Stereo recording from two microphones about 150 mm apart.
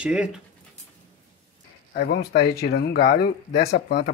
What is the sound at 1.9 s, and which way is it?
Speech, 85° left.